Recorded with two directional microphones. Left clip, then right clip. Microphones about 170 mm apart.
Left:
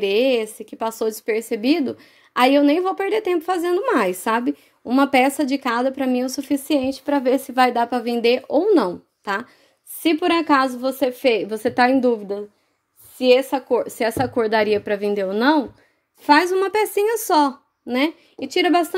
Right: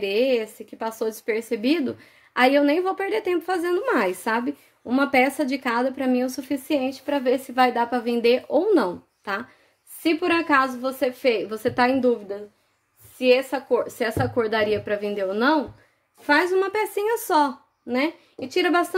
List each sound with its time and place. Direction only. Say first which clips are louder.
0.0 s a woman's voice: left 3 dB; 40° left (ahead or behind)
10.0 s a woman's voice: left 3 dB; 50° left (ahead or behind)
13.2 s a woman's voice: left 3 dB; 55° left (ahead or behind)
17.9 s a woman's voice: left 3 dB; 55° left (ahead or behind)